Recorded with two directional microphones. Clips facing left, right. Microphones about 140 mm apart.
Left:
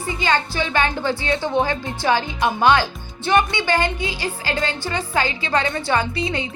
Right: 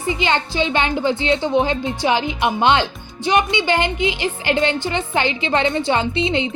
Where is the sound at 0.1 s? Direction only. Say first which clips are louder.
Right 2 dB; 20° right (ahead or behind).